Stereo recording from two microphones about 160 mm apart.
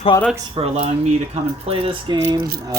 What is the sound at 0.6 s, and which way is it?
Speech, 40° right (ahead or behind).